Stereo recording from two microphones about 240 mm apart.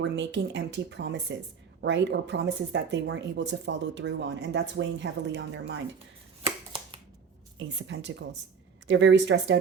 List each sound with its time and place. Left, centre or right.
0.0 s speech: right
6.4 s finger snapping: right
7.6 s speech: right